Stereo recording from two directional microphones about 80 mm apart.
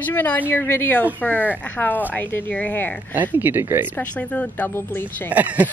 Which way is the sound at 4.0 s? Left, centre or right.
Centre.